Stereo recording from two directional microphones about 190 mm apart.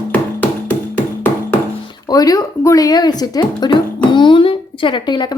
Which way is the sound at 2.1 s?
20° left (ahead or behind).